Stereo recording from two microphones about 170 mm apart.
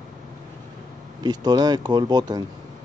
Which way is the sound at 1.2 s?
25° right (ahead or behind).